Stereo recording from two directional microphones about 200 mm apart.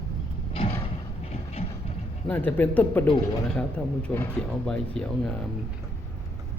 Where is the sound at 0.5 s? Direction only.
25° left (ahead or behind).